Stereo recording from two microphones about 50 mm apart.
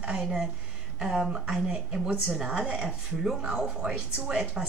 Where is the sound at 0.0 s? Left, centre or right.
Centre.